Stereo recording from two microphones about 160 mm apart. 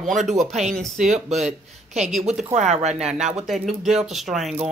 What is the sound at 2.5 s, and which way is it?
Speech, 45° right (ahead or behind).